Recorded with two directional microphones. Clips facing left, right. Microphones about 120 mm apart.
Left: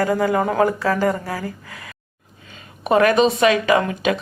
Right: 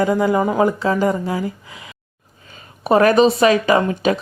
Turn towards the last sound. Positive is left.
turn(degrees=-30)  # may be behind; listen again after turning